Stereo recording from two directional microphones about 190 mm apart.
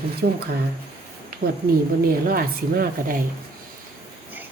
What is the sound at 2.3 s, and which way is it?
Speech, 50° right (ahead or behind).